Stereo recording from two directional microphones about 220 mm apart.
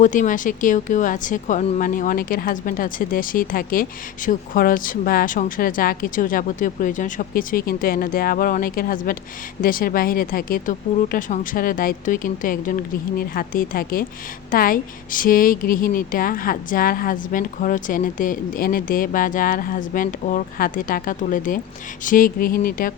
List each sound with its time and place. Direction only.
0.0 s a woman's voice: 35° left (ahead or behind)